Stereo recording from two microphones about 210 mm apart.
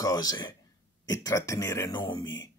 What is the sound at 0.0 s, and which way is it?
A man's voice, 15° left (ahead or behind).